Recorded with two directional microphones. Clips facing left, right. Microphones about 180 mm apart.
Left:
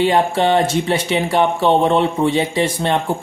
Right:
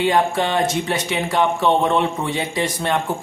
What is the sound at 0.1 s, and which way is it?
Speech, 30° left (ahead or behind).